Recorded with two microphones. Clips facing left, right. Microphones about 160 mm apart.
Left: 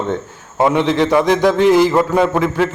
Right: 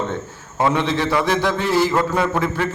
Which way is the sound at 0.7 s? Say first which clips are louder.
Left 7 dB; 15° left (ahead or behind).